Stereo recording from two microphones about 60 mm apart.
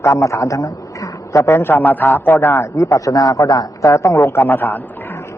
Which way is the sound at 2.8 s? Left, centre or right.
Left.